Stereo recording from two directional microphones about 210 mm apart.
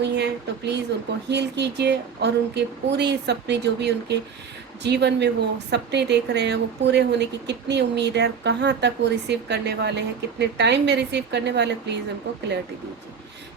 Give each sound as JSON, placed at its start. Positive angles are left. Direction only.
{"t": 0.0, "sound": "a woman's voice", "side_deg": -55}